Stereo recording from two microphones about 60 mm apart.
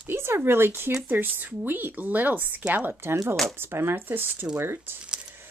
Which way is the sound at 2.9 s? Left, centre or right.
Right.